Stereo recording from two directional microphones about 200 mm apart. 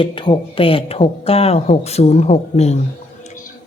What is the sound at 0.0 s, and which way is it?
A woman's voice, 25° left (ahead or behind).